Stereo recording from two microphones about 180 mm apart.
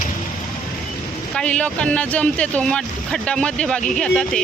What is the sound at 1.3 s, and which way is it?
Speech, 5° left (ahead or behind).